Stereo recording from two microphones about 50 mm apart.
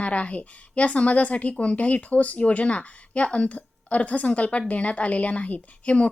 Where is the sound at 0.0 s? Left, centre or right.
Left.